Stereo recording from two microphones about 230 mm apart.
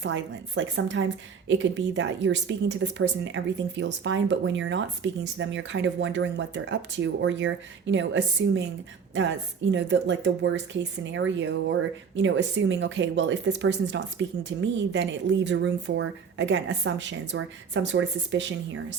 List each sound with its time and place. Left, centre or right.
0.0 s speech: right
9.7 s speech: right